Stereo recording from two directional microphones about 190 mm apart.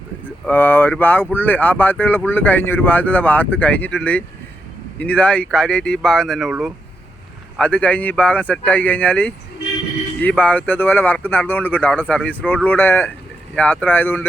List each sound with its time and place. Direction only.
0.4 s speech: 10° left (ahead or behind)